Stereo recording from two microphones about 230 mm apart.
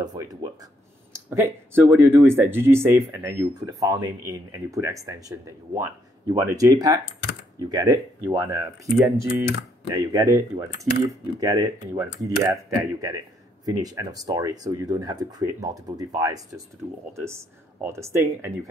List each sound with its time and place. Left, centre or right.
0.0 s speech: centre